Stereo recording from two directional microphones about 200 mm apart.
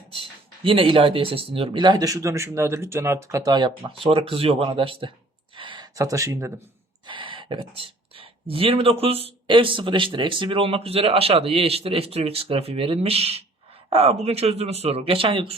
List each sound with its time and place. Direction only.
0.1 s speech: 25° right (ahead or behind)
5.5 s a sound: 25° right (ahead or behind)
7.9 s speech: 25° right (ahead or behind)